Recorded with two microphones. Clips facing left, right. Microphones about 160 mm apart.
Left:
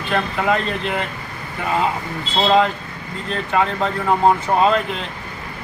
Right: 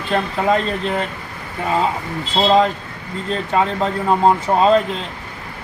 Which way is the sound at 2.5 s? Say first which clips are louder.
Right 1 dB; 35° right (ahead or behind).